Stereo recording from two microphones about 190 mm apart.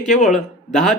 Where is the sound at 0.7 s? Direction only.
Centre (ahead or behind).